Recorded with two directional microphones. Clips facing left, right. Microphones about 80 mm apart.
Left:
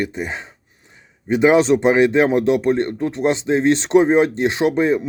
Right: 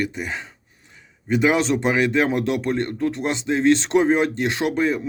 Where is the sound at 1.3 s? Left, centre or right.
Left.